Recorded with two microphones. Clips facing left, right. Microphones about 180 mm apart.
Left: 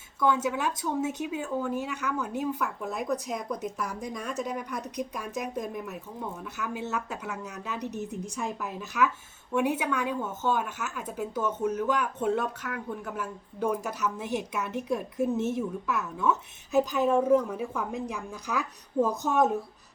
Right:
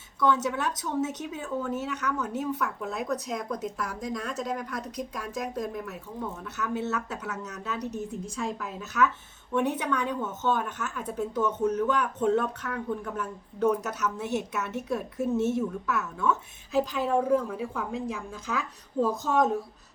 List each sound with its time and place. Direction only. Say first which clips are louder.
0.2 s speech: even; 10° left (ahead or behind)